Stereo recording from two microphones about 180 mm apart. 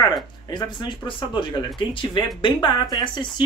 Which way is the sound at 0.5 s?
25° left (ahead or behind).